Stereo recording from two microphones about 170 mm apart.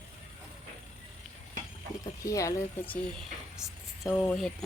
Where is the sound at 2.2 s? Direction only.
20° left (ahead or behind).